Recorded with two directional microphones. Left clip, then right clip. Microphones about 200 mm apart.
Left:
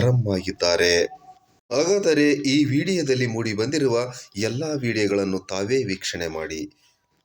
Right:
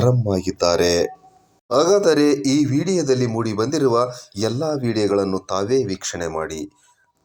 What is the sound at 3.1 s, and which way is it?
Speech, 10° right (ahead or behind).